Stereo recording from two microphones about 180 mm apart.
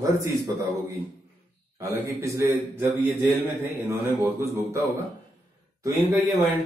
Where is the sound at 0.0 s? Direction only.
15° right (ahead or behind).